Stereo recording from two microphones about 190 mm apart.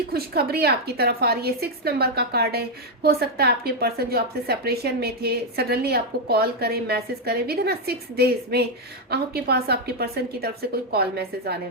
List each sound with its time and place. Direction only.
0.1 s a woman's voice: 55° right (ahead or behind)